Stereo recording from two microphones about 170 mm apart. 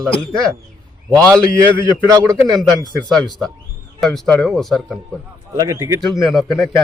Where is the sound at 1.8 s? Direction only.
15° right (ahead or behind).